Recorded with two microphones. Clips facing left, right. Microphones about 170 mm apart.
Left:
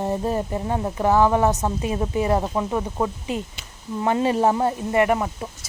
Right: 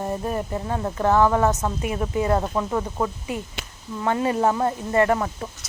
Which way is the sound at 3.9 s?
20° left (ahead or behind).